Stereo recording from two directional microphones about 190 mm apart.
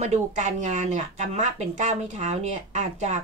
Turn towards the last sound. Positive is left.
turn(degrees=-40)  # may be behind; listen again after turning